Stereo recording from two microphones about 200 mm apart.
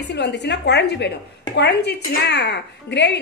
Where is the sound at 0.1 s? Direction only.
60° left (ahead or behind).